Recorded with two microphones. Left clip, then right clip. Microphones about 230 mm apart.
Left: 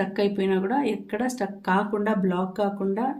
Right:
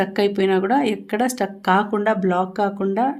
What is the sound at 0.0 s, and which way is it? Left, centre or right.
Speech, right.